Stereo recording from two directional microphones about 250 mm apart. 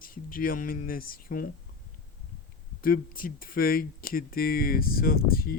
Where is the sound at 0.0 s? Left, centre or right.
Left.